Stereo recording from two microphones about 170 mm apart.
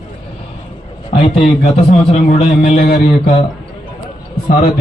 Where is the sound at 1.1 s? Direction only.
35° left (ahead or behind).